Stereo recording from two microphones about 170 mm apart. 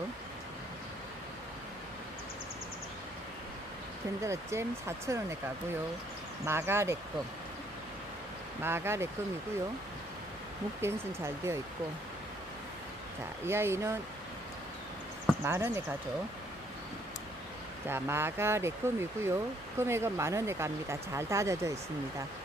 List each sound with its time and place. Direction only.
4.2 s speech: 15° right (ahead or behind)
6.4 s speech: 15° right (ahead or behind)
8.6 s speech: 15° right (ahead or behind)
10.8 s speech: 15° right (ahead or behind)
13.5 s speech: 15° right (ahead or behind)
15.4 s speech: 15° right (ahead or behind)
17.8 s speech: 15° right (ahead or behind)